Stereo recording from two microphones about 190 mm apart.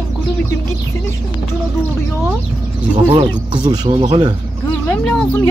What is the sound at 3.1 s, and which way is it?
Speech, 25° right (ahead or behind).